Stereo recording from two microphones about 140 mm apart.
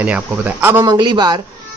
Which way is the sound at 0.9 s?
30° right (ahead or behind).